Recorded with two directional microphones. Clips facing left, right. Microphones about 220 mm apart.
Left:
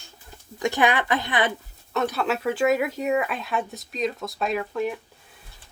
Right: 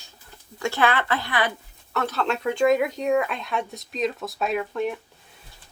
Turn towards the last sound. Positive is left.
turn(degrees=0)  # may be behind; listen again after turning